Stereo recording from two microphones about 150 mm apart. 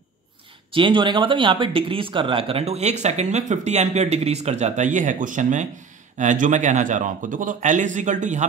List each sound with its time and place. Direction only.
0.7 s a man's voice: 35° right (ahead or behind); by 8.5 s 55° right (ahead or behind)